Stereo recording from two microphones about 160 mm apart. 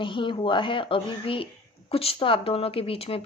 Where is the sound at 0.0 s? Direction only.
30° left (ahead or behind).